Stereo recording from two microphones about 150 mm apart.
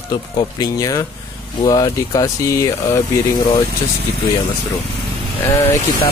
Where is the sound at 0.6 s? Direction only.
25° left (ahead or behind).